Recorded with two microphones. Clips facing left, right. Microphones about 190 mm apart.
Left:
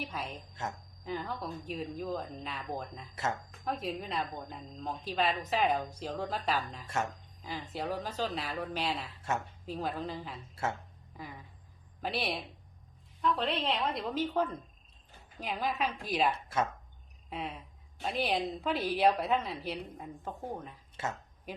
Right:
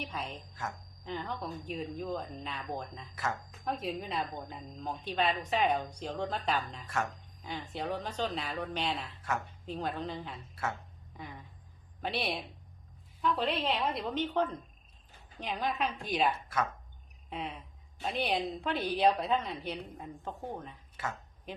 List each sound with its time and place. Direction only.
0.0 s a woman's voice: 5° left (ahead or behind)
0.6 s speech: 25° left (ahead or behind)
1.0 s a woman's voice: 5° left (ahead or behind)
6.8 s speech: 25° left (ahead or behind)
7.4 s a woman's voice: 5° left (ahead or behind)
10.5 s speech: 25° left (ahead or behind)
11.1 s a sound: centre (ahead or behind)
12.0 s a woman's voice: centre (ahead or behind)
17.2 s a sound: centre (ahead or behind)
18.0 s a woman's voice: centre (ahead or behind)
20.9 s speech: 25° left (ahead or behind)